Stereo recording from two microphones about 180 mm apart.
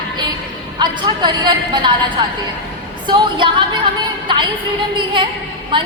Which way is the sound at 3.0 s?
25° right (ahead or behind).